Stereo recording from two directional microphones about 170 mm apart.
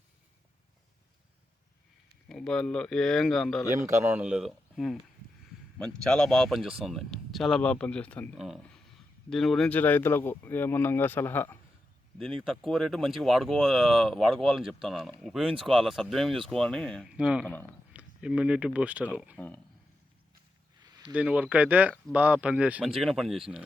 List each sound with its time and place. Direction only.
2.3 s speech: 5° left (ahead or behind)
3.7 s speech: 15° right (ahead or behind); by 11.5 s 15° left (ahead or behind)
12.5 s speech: centre (ahead or behind)
17.4 s speech: 10° left (ahead or behind)
17.9 s speech: 5° right (ahead or behind)
21.0 s speech: 5° right (ahead or behind)